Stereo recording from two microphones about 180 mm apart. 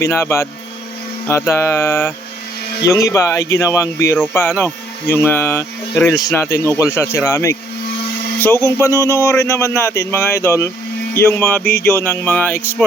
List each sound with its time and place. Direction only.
0.0 s speech: 15° left (ahead or behind)